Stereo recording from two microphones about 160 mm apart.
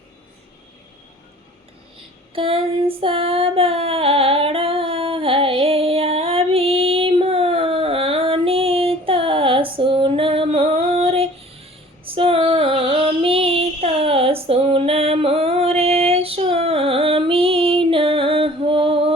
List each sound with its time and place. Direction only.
2.3 s child singing: 35° right (ahead or behind)
12.0 s female singing: 35° right (ahead or behind)